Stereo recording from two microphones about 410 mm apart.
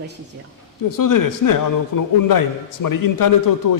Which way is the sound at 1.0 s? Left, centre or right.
Left.